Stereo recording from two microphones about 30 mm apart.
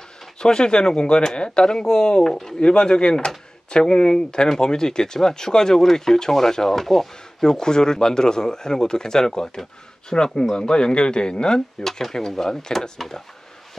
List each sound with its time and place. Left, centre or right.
0.4 s speech: left
2.6 s speech: left
11.8 s speech: centre
13.0 s speech: centre